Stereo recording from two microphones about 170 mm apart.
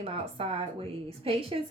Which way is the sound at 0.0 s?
35° right (ahead or behind).